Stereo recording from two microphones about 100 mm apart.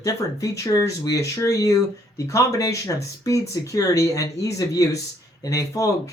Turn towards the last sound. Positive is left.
turn(degrees=35)  # may be behind; listen again after turning